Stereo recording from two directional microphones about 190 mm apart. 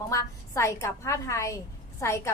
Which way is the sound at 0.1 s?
15° left (ahead or behind).